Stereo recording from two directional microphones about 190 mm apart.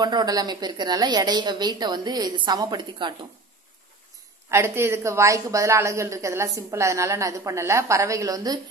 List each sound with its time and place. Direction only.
0.0 s a woman's voice: 20° right (ahead or behind)
4.5 s a woman's voice: 15° right (ahead or behind)